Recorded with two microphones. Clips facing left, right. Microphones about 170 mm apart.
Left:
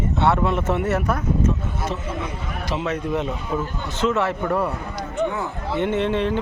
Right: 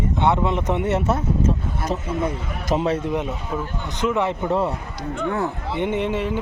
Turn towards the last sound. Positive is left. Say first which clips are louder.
# left 2 dB
turn(degrees=-10)  # may be behind; listen again after turning